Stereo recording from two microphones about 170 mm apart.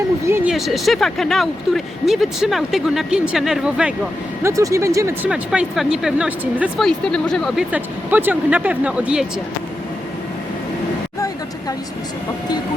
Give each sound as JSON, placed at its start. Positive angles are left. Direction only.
{"t": 0.3, "sound": "a sound", "side_deg": -15}
{"t": 0.5, "sound": "speech", "side_deg": 0}
{"t": 4.4, "sound": "speech", "side_deg": -20}
{"t": 5.3, "sound": "speech", "side_deg": -5}
{"t": 6.7, "sound": "speech", "side_deg": 5}